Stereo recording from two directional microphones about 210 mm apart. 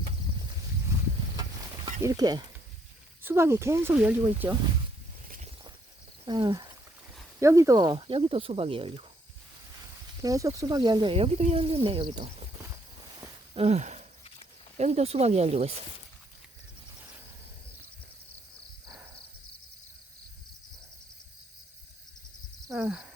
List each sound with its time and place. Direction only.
2.0 s speech: 15° right (ahead or behind)
6.2 s speech: 20° right (ahead or behind)
10.2 s speech: 15° right (ahead or behind)
12.6 s walk: 15° right (ahead or behind)
13.5 s a sound: 30° right (ahead or behind)
14.8 s speech: 30° right (ahead or behind)
22.7 s a sound: 5° right (ahead or behind)